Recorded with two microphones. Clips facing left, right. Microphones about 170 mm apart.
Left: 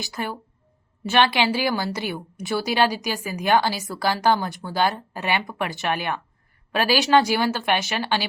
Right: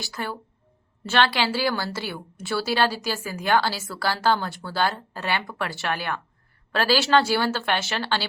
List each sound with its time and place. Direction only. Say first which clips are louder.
0.0 s a woman's voice: left 2 dB; 20° left (ahead or behind)